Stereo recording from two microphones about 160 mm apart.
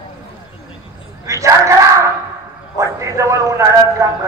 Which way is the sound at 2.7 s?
20° right (ahead or behind).